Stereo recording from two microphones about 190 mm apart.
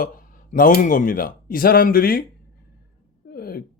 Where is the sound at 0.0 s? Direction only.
50° left (ahead or behind).